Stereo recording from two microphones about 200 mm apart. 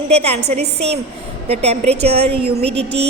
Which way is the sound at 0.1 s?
30° right (ahead or behind).